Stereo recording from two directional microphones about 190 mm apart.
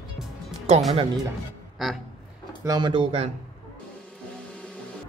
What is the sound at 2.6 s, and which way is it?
Speech, 20° right (ahead or behind).